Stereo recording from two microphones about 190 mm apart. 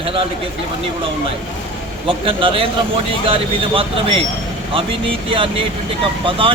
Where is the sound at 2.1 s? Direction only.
30° right (ahead or behind).